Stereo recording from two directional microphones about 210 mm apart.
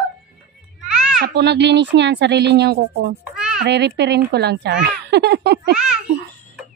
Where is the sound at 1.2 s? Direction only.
55° right (ahead or behind).